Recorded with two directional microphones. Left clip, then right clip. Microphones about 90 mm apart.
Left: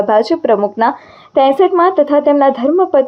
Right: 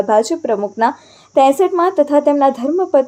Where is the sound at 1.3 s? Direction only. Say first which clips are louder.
Left 2 dB; 20° right (ahead or behind).